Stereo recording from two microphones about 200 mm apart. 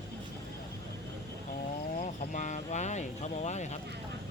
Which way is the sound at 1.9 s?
40° left (ahead or behind).